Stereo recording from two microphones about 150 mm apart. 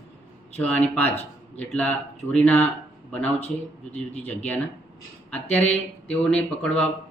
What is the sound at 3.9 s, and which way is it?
Speech, 10° left (ahead or behind).